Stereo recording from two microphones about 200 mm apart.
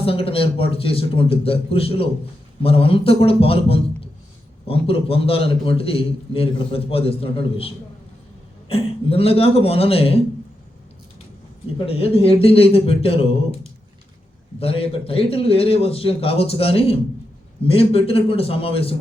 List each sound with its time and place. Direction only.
0.0 s a man's voice: 30° left (ahead or behind)
8.7 s a man's voice: 30° left (ahead or behind)
11.9 s a man's voice: 30° left (ahead or behind)
14.6 s a man's voice: 30° left (ahead or behind)